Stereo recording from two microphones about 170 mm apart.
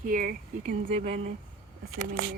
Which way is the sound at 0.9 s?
35° right (ahead or behind).